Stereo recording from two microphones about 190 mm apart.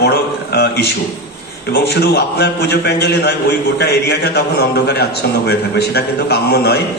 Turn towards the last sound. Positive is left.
turn(degrees=60)  # may be behind; listen again after turning